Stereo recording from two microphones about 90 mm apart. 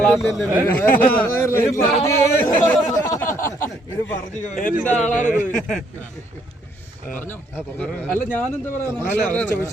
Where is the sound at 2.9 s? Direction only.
40° left (ahead or behind).